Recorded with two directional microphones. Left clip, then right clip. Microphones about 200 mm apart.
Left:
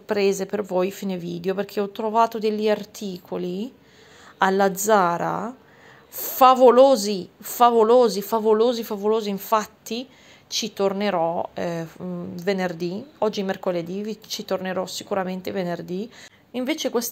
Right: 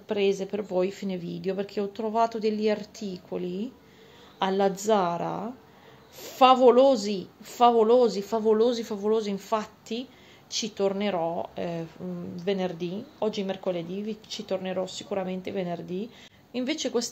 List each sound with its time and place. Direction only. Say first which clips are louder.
0.0 s a woman's voice: left 4 dB; 20° left (ahead or behind)